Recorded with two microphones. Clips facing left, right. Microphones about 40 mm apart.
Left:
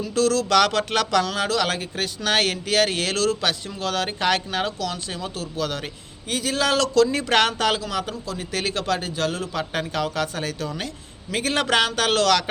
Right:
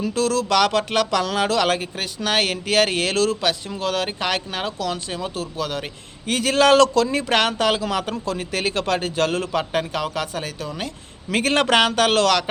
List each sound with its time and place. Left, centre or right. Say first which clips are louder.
0.1 s speech: left 2 dB; right
1.2 s speech: right 3 dB; right
2.0 s speech: even; centre
2.6 s speech: right 2 dB; right; by 4.7 s centre
4.8 s speech: right 3 dB; right
6.2 s a man's voice: right 6 dB; right
6.9 s speech: left 1 dB; right
7.8 s a man's voice: right 4 dB; right
8.5 s a man's voice: right 1 dB; right
9.5 s speech: right 4 dB; right
9.9 s speech: even; centre
11.3 s a man's voice: right 4 dB; right